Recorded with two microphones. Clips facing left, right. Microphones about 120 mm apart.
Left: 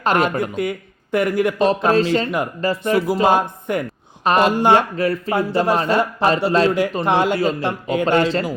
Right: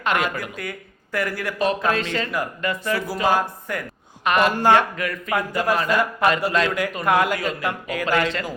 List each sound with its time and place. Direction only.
0.0 s a woman's voice: 35° left (ahead or behind)
0.5 s speech: 20° left (ahead or behind)
1.5 s speech: 30° left (ahead or behind)
3.2 s a man's voice: 25° left (ahead or behind)
4.2 s a woman's voice: 35° left (ahead or behind)
4.5 s a man's voice: 20° left (ahead or behind)
4.9 s a man's voice: 35° left (ahead or behind)